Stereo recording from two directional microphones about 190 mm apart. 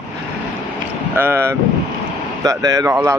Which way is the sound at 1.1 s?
10° right (ahead or behind).